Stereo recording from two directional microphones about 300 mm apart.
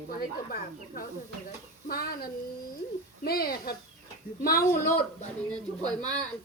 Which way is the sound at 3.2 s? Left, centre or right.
Left.